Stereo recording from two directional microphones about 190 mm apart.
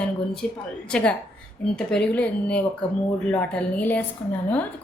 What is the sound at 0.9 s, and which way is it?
A woman's voice, 5° left (ahead or behind).